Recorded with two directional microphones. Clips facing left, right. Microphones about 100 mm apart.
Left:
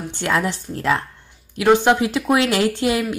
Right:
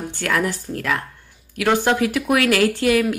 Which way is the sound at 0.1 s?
20° left (ahead or behind).